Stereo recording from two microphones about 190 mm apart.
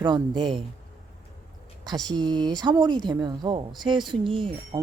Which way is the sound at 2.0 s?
25° right (ahead or behind).